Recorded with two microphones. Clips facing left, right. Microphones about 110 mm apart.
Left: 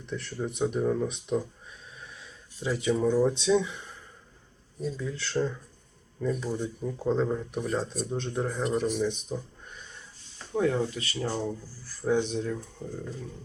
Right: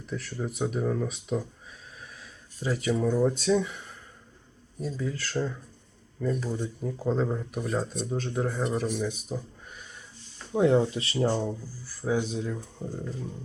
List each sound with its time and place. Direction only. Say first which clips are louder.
0.0 s speech: even; 5° right (ahead or behind)
10.5 s speech: right 4 dB; 20° right (ahead or behind)
11.3 s speech: right 1 dB; 10° right (ahead or behind)
12.9 s speech: right 2 dB; 15° right (ahead or behind)